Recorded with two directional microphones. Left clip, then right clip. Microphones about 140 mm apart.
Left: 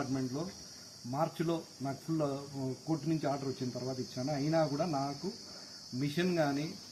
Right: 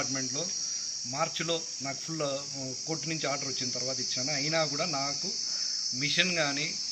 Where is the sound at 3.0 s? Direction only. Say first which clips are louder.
Right 3 dB; 10° left (ahead or behind).